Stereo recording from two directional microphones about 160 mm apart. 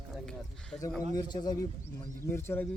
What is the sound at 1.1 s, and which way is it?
Speech, 25° left (ahead or behind).